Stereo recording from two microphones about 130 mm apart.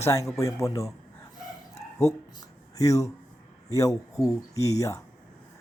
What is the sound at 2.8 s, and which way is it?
Speech, 25° left (ahead or behind).